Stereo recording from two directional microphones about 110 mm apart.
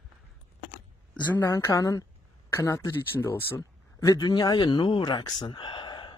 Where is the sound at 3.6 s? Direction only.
30° left (ahead or behind).